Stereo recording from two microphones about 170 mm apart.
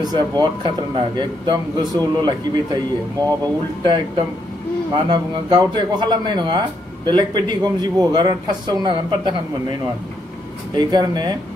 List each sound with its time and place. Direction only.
0.0 s speech: 25° right (ahead or behind)
4.9 s speech: 25° right (ahead or behind)
10.8 s speech: 25° right (ahead or behind)